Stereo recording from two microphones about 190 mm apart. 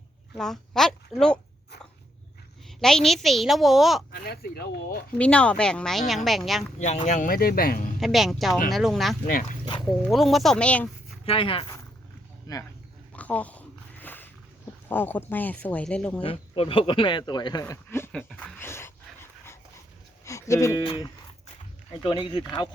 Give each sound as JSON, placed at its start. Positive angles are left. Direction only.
{"t": 0.3, "sound": "speech", "side_deg": 0}
{"t": 2.6, "sound": "speech", "side_deg": 0}
{"t": 4.1, "sound": "speech", "side_deg": 55}
{"t": 5.1, "sound": "speech", "side_deg": 5}
{"t": 6.7, "sound": "speech", "side_deg": 35}
{"t": 7.9, "sound": "speech", "side_deg": 0}
{"t": 9.2, "sound": "speech", "side_deg": 45}
{"t": 9.8, "sound": "speech", "side_deg": 0}
{"t": 11.3, "sound": "speech", "side_deg": 30}
{"t": 13.1, "sound": "a sound", "side_deg": 5}
{"t": 14.8, "sound": "speech", "side_deg": 10}
{"t": 16.2, "sound": "speech", "side_deg": 30}
{"t": 20.2, "sound": "speech", "side_deg": 15}